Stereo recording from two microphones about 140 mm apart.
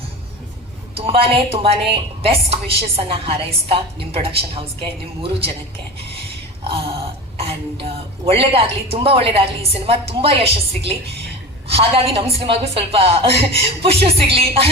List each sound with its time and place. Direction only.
0.9 s a woman's voice: 45° right (ahead or behind)
7.3 s a woman's voice: 45° right (ahead or behind)